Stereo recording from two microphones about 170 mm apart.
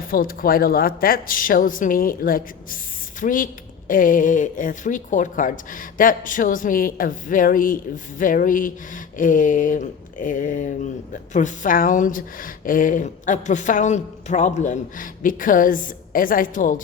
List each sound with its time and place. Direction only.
0.1 s a woman's voice: 55° left (ahead or behind)